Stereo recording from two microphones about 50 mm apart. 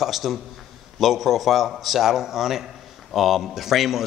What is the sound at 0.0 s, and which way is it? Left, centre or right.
A man's voice, centre.